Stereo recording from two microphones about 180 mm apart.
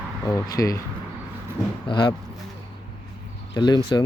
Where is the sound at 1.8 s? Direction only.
25° left (ahead or behind).